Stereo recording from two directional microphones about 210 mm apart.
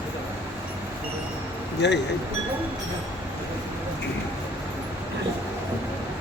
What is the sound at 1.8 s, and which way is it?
Speech, 55° left (ahead or behind).